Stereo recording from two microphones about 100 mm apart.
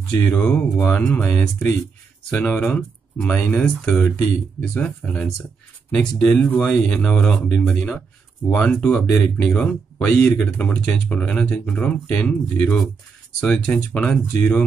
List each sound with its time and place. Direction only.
0.2 s speech: 15° left (ahead or behind)